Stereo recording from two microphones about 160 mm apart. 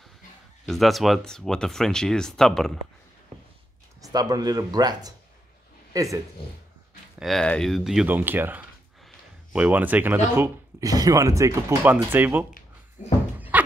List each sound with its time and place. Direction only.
0.7 s speech: centre (ahead or behind)
4.0 s speech: 25° right (ahead or behind)
7.2 s speech: centre (ahead or behind)
13.0 s a sound: 50° left (ahead or behind)